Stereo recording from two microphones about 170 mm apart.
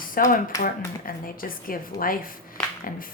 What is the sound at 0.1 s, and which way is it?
Speech, 55° left (ahead or behind).